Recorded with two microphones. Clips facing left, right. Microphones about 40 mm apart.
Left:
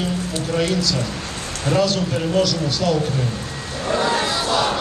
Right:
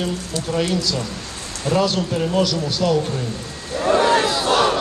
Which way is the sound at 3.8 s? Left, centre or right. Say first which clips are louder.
Right 4 dB; right.